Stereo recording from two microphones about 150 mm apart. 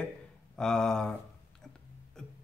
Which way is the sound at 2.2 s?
5° left (ahead or behind).